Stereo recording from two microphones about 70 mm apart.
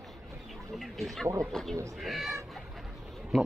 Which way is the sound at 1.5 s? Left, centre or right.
Centre.